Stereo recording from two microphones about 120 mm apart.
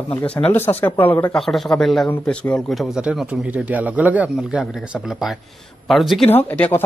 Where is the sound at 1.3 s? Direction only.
Centre (ahead or behind).